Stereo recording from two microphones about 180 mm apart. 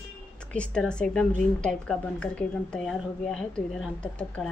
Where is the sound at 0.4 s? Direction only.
5° left (ahead or behind).